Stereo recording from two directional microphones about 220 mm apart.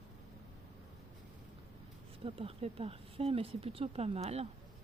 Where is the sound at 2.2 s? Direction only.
25° right (ahead or behind).